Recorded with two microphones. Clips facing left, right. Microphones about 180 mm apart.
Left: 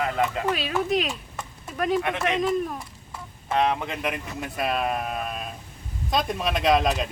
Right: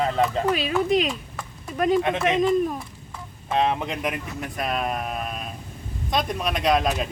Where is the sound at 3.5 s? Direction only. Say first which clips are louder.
Right 1 dB; 20° right (ahead or behind).